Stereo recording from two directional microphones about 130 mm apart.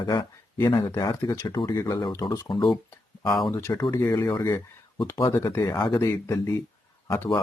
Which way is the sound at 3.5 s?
25° left (ahead or behind).